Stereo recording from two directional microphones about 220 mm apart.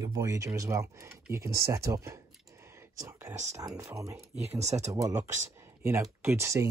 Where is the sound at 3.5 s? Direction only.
15° right (ahead or behind).